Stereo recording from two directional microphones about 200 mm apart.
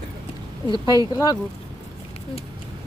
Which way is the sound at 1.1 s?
15° left (ahead or behind).